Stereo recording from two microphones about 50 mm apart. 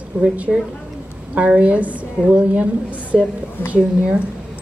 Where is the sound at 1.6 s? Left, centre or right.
Right.